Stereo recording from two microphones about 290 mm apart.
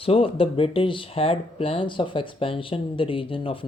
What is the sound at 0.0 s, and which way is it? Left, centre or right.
Speech, centre.